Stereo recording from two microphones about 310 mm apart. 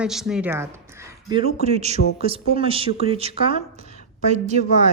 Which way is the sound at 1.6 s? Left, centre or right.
Right.